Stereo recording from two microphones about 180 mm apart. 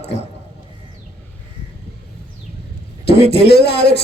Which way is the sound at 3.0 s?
65° left (ahead or behind).